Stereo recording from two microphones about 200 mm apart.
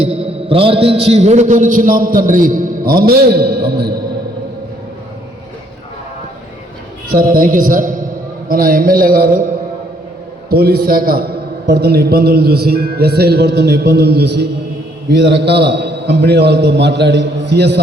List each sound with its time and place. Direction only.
0.0 s a man's voice: 30° right (ahead or behind); by 3.9 s 55° right (ahead or behind)
7.1 s a man's voice: 45° right (ahead or behind)
10.5 s a man's voice: 50° right (ahead or behind)